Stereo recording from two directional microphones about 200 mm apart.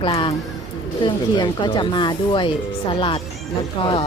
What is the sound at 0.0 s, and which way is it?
Speech, 25° left (ahead or behind).